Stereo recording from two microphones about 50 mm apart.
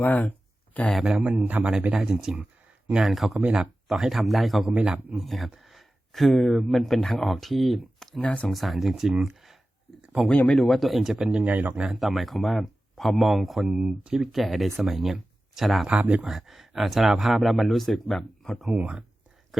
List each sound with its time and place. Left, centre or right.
0.0 s a sound: left
1.2 s a man's voice: right
2.0 s speech: centre
8.2 s speech: left
8.4 s speech: centre
9.3 s a sound: centre
10.2 s speech: left
10.6 s speech: centre
11.2 s speech: centre
11.4 s a man's voice: right
11.8 s speech: centre
15.9 s a man's voice: right
16.2 s speech: centre
18.7 s speech: right